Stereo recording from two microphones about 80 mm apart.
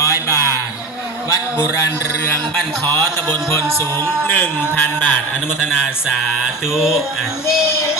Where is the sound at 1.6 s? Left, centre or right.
Left.